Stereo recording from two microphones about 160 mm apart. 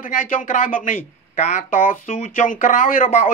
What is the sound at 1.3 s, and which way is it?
Speech, 45° left (ahead or behind).